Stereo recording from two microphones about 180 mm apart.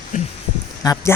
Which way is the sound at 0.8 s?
20° left (ahead or behind).